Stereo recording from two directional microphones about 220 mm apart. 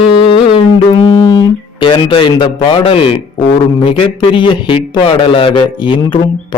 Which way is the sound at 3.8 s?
20° left (ahead or behind).